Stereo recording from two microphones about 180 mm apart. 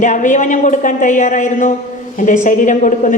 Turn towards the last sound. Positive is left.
turn(degrees=45)  # may be behind; listen again after turning